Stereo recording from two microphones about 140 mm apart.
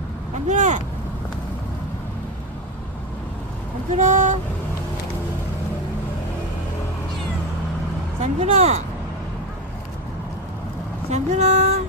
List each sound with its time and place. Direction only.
0.5 s vehicle: 60° right (ahead or behind)
3.9 s speech: 60° right (ahead or behind)
8.2 s speech: 50° right (ahead or behind)
11.1 s vehicle: 50° right (ahead or behind)